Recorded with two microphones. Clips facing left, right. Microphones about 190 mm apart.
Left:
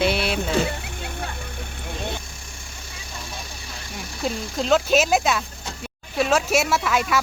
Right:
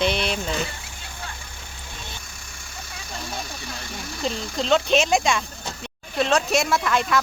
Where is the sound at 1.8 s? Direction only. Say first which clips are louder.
Left 11 dB; 60° left (ahead or behind).